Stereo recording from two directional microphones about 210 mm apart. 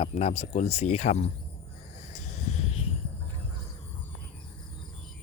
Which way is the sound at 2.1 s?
30° left (ahead or behind).